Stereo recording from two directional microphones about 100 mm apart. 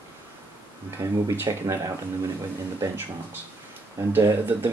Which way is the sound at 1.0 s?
30° right (ahead or behind).